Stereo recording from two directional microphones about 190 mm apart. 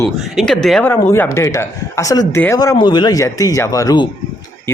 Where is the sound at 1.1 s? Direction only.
15° left (ahead or behind).